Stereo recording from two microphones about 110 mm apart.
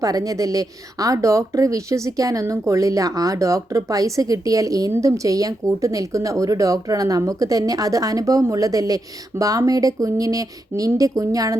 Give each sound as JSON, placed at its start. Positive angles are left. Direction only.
{"t": 0.0, "sound": "speech", "side_deg": -35}